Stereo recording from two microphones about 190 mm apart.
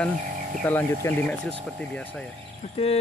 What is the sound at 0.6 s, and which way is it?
Speech, 10° left (ahead or behind).